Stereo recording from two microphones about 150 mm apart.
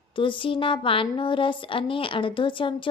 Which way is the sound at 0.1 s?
35° left (ahead or behind).